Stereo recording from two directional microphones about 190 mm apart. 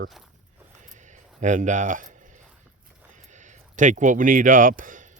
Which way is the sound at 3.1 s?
40° right (ahead or behind).